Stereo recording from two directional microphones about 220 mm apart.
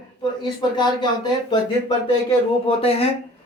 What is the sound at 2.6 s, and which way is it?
Speech, 25° left (ahead or behind).